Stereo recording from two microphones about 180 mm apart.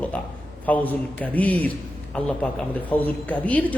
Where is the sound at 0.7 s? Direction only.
10° left (ahead or behind).